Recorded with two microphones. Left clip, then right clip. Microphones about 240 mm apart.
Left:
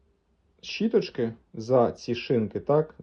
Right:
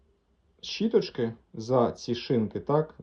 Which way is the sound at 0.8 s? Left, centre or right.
Centre.